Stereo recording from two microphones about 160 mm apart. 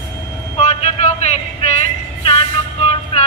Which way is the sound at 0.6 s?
45° left (ahead or behind).